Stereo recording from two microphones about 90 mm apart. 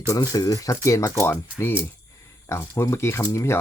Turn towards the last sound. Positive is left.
turn(degrees=30)  # may be behind; listen again after turning